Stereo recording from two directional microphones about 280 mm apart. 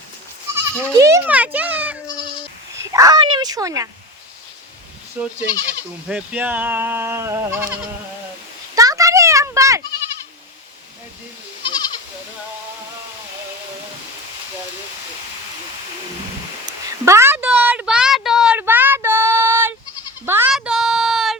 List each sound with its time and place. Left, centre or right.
0.5 s speech: centre
5.2 s speech: centre
8.7 s a sound: centre
11.6 s goat: centre
17.1 s a sound: centre
20.2 s child singing: centre